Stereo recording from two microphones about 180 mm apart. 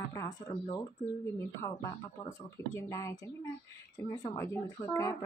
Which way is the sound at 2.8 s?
15° left (ahead or behind).